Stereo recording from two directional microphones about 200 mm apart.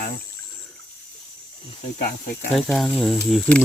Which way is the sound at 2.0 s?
45° left (ahead or behind).